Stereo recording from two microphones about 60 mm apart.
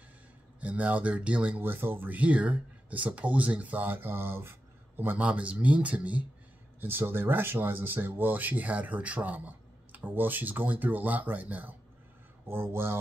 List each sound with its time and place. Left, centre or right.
0.6 s speech: right
1.6 s speech: right
5.1 s speech: right
6.8 s speech: right
12.4 s speech: right